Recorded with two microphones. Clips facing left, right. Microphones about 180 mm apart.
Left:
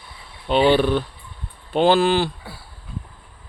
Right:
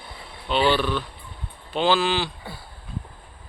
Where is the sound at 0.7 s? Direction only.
50° left (ahead or behind).